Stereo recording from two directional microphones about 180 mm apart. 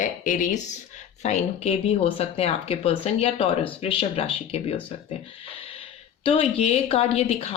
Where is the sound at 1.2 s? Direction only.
35° left (ahead or behind).